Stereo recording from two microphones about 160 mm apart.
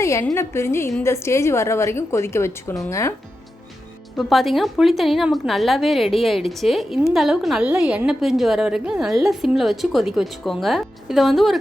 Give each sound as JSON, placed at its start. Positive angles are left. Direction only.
{"t": 0.0, "sound": "a woman's voice", "side_deg": 20}
{"t": 4.2, "sound": "a woman's voice", "side_deg": 0}